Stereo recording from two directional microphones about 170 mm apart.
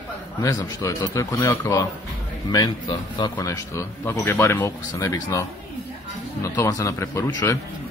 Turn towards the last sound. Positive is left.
turn(degrees=15)  # may be behind; listen again after turning